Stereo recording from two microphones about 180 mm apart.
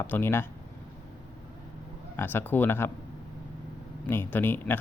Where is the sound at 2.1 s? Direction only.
10° left (ahead or behind).